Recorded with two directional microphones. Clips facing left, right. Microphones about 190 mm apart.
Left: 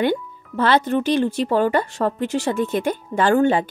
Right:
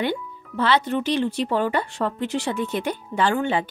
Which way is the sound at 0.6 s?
45° left (ahead or behind).